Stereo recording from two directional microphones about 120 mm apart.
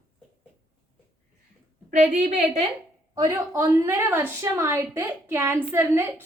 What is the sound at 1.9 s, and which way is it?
Speech, 85° right.